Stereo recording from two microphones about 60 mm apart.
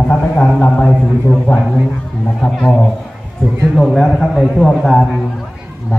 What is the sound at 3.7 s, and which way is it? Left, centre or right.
A man's voice, centre.